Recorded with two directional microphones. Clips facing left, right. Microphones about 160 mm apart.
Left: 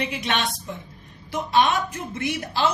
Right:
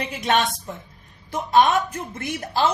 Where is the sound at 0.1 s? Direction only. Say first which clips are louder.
Right 5 dB; 45° right (ahead or behind).